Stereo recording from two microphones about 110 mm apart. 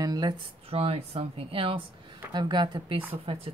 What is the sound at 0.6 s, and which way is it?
Speech, 65° right (ahead or behind).